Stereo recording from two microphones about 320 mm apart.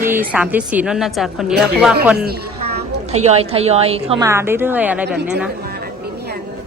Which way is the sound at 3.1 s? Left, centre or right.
Centre.